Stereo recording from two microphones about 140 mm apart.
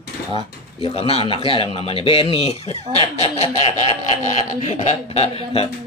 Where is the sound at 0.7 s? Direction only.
45° left (ahead or behind).